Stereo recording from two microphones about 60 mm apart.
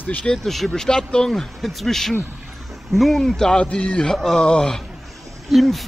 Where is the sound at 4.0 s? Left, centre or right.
Centre.